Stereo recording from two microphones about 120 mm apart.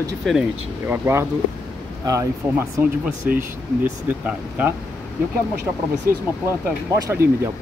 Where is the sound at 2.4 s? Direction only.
20° right (ahead or behind).